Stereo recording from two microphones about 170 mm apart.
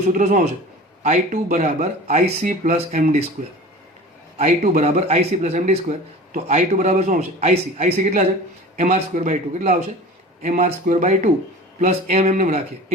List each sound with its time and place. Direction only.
0.1 s speech: 50° right (ahead or behind)
4.4 s speech: 50° right (ahead or behind)